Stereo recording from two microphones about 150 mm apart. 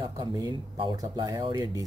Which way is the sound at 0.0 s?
25° right (ahead or behind).